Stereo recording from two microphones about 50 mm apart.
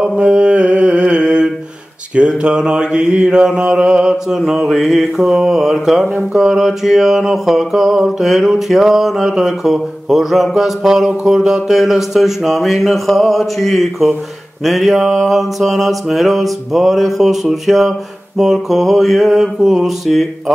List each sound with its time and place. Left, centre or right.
0.1 s mantra: right
4.1 s mantra: centre
11.2 s speech: centre